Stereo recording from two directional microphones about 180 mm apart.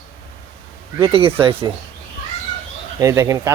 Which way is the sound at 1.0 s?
30° right (ahead or behind).